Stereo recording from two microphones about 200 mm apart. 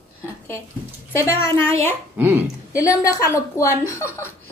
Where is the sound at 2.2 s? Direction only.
10° right (ahead or behind).